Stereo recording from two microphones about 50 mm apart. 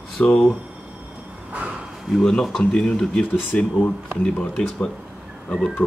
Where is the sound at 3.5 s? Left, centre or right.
Left.